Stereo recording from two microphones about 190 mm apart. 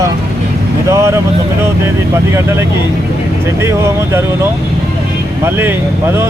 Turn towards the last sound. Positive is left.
turn(degrees=-10)  # may be behind; listen again after turning